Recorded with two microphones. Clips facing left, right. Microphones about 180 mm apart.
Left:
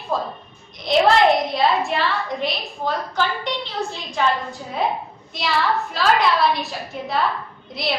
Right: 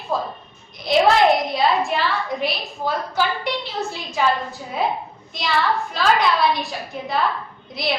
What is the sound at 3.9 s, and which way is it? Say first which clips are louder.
Speech: right 1 dB; 5° right (ahead or behind).